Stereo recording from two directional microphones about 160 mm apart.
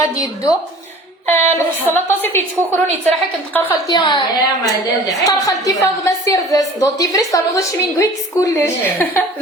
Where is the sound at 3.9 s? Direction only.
25° left (ahead or behind).